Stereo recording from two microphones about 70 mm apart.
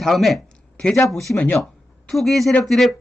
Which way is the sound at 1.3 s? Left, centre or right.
Left.